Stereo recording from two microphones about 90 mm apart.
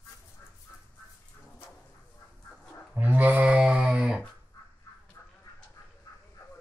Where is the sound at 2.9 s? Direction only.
15° right (ahead or behind).